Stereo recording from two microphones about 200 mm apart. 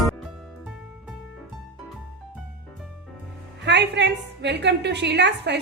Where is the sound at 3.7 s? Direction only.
60° right (ahead or behind).